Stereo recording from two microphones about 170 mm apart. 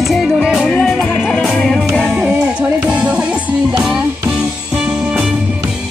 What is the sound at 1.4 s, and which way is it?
Music, centre (ahead or behind).